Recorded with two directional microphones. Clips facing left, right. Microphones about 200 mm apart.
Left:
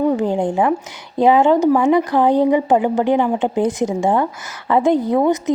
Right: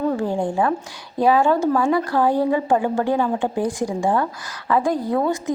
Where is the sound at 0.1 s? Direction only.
20° left (ahead or behind).